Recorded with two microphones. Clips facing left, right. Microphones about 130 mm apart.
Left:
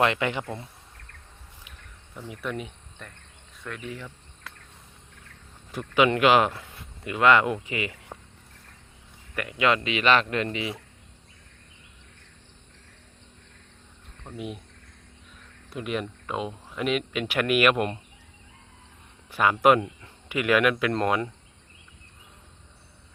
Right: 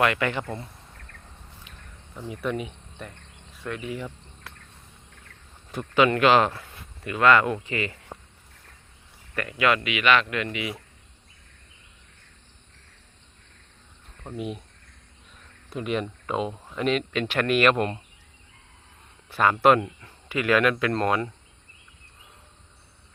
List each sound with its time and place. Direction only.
0.0 s speech: 20° left (ahead or behind)
2.3 s speech: centre (ahead or behind)
3.9 s cricket: 15° right (ahead or behind)
5.7 s speech: 15° left (ahead or behind)
9.3 s speech: 15° left (ahead or behind); by 10.8 s 30° left (ahead or behind)
14.3 s speech: centre (ahead or behind)
15.7 s speech: centre (ahead or behind)
19.3 s speech: 10° left (ahead or behind)